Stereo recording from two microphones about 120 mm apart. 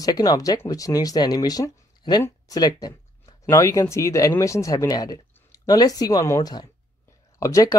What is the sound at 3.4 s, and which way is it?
Speech, 25° left (ahead or behind).